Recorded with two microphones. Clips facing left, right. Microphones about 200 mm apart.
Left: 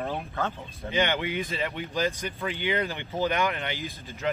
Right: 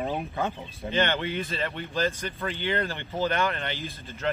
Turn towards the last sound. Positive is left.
turn(degrees=15)  # may be behind; listen again after turning